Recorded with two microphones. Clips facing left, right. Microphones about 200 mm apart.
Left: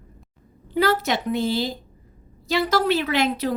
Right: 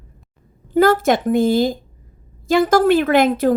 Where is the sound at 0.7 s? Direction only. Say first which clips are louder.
Right 7 dB; 50° right (ahead or behind).